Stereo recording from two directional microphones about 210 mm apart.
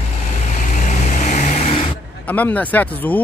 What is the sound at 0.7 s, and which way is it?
Vehicle, 35° left (ahead or behind).